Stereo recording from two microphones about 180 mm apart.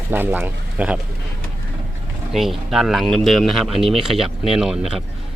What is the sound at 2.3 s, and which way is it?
Speech, centre (ahead or behind).